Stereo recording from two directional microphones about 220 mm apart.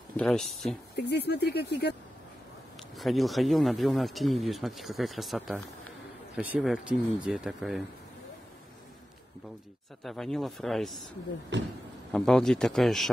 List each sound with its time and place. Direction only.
0.2 s speech: centre (ahead or behind)
0.9 s speech: 50° left (ahead or behind)
3.0 s speech: centre (ahead or behind)
10.0 s speech: centre (ahead or behind)
12.1 s speech: 5° left (ahead or behind)